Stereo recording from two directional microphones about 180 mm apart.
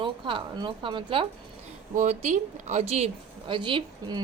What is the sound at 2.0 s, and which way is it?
Speech, 40° right (ahead or behind).